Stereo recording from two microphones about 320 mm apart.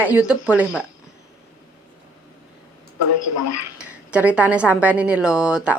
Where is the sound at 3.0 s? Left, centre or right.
Left.